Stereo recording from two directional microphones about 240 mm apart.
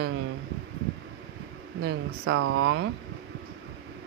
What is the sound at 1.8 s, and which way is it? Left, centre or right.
Speech, right.